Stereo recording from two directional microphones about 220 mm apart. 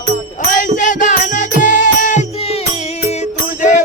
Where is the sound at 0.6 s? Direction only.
35° left (ahead or behind).